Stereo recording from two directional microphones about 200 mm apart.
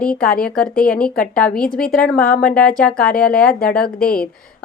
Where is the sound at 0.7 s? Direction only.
45° left (ahead or behind).